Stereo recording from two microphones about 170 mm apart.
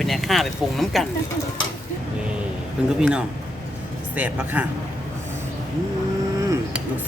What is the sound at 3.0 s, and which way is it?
Speech, 5° right (ahead or behind).